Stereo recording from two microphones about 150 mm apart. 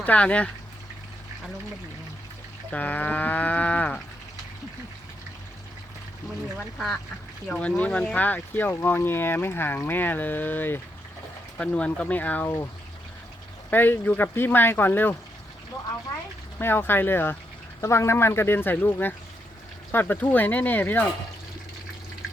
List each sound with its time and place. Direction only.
0.0 s speech: 10° left (ahead or behind)
2.7 s speech: 10° left (ahead or behind)
6.6 s speech: 5° left (ahead or behind)
13.7 s speech: 15° left (ahead or behind)
16.6 s speech: 15° left (ahead or behind)